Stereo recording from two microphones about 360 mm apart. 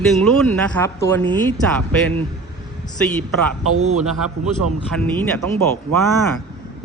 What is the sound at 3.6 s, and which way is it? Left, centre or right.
Speech, right.